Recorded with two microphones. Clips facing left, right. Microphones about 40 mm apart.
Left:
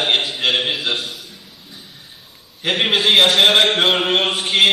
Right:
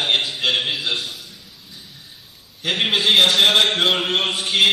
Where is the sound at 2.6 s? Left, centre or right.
Centre.